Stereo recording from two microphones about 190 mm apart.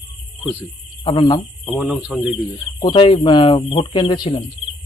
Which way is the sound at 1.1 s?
20° left (ahead or behind).